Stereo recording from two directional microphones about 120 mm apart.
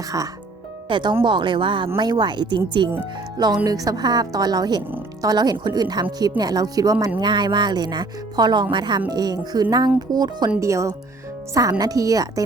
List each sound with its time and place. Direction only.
0.9 s speech: 40° right (ahead or behind)